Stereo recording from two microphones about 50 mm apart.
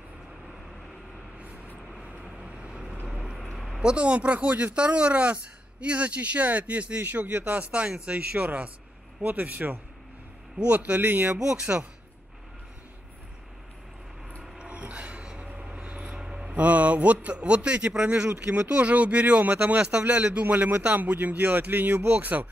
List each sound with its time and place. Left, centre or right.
2.4 s vehicle: centre
3.1 s vehicle: centre
3.5 s a sound: centre
3.8 s speech: right
7.0 s a man's voice: right
11.3 s speech: centre
14.6 s a sound: right
16.5 s a man's voice: right